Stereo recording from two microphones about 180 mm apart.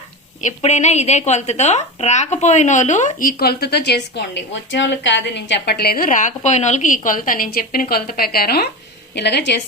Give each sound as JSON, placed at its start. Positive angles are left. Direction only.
{"t": 0.6, "sound": "a woman's voice", "side_deg": 40}